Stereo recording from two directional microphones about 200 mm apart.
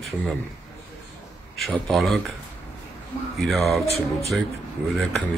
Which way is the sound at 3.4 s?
Centre (ahead or behind).